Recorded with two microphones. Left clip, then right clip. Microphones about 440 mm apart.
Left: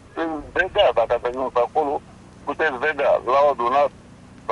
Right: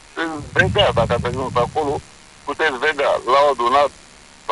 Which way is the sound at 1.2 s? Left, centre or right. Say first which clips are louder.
Right 1 dB; right.